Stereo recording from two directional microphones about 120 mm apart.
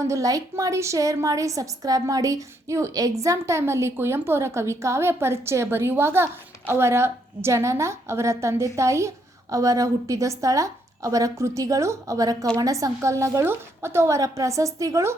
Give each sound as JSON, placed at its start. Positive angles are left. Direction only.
{"t": 0.0, "sound": "a woman's voice", "side_deg": -25}